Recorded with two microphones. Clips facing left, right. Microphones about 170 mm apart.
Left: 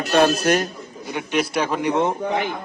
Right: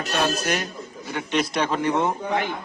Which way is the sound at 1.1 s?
10° left (ahead or behind).